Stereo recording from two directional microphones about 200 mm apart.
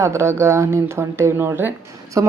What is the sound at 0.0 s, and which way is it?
Speech, 15° right (ahead or behind).